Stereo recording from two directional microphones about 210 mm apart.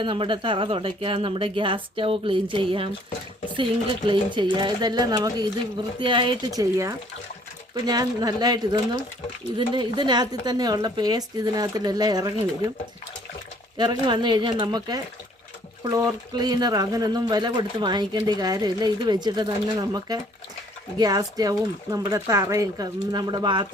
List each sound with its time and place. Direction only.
0.0 s speech: 25° right (ahead or behind)
14.1 s speech: 20° right (ahead or behind)